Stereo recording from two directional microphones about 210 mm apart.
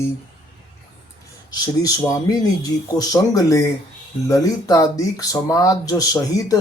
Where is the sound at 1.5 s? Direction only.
15° left (ahead or behind).